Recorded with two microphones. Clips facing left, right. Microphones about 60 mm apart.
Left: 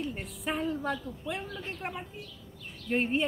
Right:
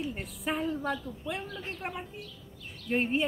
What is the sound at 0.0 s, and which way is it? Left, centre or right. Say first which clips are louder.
A woman's voice: even; centre.